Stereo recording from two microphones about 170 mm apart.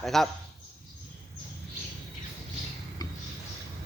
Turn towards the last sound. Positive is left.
turn(degrees=20)  # may be behind; listen again after turning